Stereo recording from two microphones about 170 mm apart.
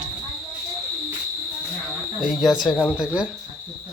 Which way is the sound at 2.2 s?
Centre (ahead or behind).